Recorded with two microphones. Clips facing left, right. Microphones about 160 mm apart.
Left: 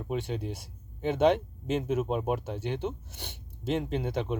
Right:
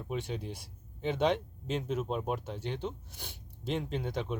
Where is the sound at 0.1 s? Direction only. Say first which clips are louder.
Left 4 dB; centre (ahead or behind).